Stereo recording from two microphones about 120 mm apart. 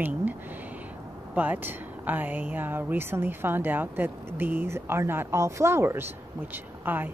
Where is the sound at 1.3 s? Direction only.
15° right (ahead or behind).